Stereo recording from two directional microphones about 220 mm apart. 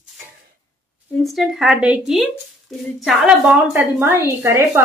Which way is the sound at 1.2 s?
Centre (ahead or behind).